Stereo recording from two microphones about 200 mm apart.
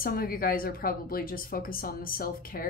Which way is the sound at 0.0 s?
45° left (ahead or behind).